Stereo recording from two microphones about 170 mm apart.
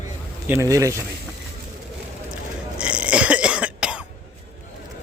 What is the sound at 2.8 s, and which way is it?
Burping, 5° right (ahead or behind).